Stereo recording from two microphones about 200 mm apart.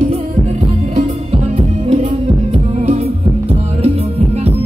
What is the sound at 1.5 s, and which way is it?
Music, 35° right (ahead or behind).